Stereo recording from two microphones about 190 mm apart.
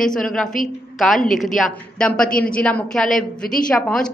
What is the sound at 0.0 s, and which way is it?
A woman's voice, 5° left (ahead or behind).